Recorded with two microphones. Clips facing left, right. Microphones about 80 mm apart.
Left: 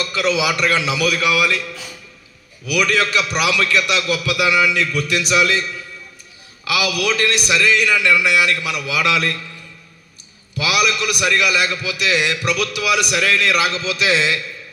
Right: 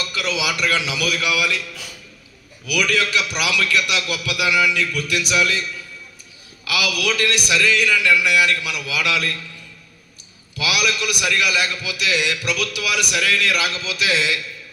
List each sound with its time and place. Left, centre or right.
0.0 s a man's voice: left
10.6 s a man's voice: left